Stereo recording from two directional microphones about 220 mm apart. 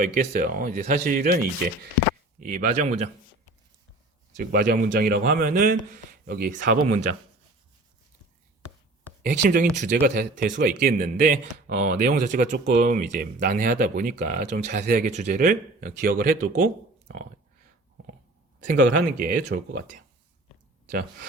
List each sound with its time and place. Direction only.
0.0 s speech: 35° right (ahead or behind)
2.4 s speech: 30° right (ahead or behind)
4.5 s speech: 40° right (ahead or behind)
9.2 s speech: 45° right (ahead or behind)
18.6 s speech: 35° right (ahead or behind)